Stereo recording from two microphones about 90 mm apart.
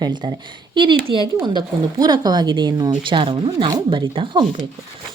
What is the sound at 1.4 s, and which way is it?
A woman's voice, 50° right (ahead or behind).